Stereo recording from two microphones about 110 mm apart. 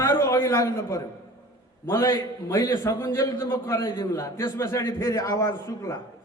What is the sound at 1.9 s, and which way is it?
A man's voice, 35° left (ahead or behind).